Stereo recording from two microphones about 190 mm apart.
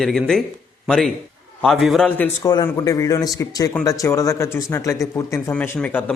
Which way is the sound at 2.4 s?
20° left (ahead or behind).